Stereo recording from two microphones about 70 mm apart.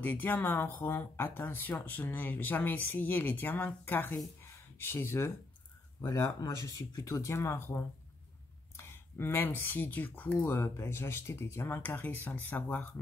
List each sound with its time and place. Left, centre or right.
0.0 s speech: left
6.4 s speech: left
10.5 s speech: left